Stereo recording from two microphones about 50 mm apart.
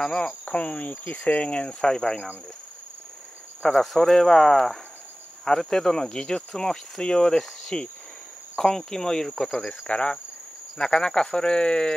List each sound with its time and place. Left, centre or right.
0.0 s cricket: centre
0.3 s cricket: left
3.6 s speech: centre
5.4 s cricket: centre
9.8 s cricket: left